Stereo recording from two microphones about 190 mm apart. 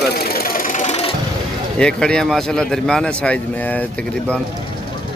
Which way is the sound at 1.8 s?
5° left (ahead or behind).